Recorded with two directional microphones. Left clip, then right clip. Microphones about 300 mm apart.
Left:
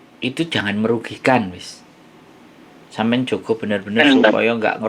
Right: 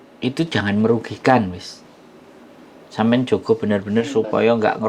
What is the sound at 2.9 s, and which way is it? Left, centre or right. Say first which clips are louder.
Speech: right 2 dB; right.